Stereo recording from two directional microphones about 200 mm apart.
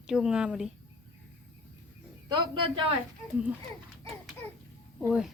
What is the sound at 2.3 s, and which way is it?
Speech, 25° right (ahead or behind).